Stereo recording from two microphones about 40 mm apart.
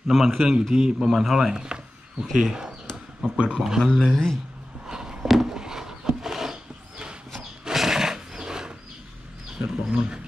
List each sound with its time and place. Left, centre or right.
0.1 s a man's voice: centre
0.8 s a man's voice: centre
1.6 s a sound: right
2.3 s a man's voice: centre
3.2 s speech: right
3.9 s a man's voice: centre
4.8 s a sound: centre
7.6 s a sound: centre
9.6 s speech: right